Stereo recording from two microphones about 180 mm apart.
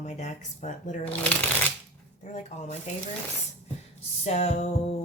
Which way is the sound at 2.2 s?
40° left (ahead or behind).